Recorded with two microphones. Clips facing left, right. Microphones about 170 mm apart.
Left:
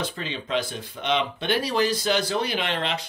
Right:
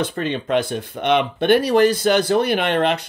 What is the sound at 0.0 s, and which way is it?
Speech, 55° right (ahead or behind).